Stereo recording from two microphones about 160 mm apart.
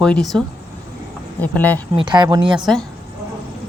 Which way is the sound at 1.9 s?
30° right (ahead or behind).